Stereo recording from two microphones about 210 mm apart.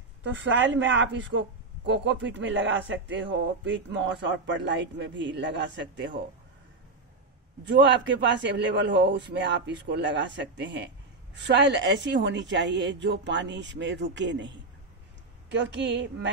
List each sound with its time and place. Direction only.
0.4 s speech: 60° right (ahead or behind)
7.6 s speech: 55° right (ahead or behind)